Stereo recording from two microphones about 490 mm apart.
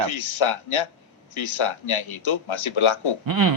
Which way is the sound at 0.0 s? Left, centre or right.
Left.